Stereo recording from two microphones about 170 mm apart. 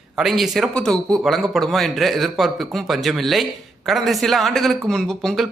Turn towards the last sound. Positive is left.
turn(degrees=0)  # may be behind; listen again after turning